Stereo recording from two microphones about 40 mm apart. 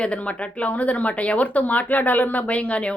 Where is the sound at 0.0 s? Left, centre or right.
Left.